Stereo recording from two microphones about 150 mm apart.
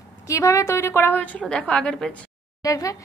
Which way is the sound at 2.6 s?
25° left (ahead or behind).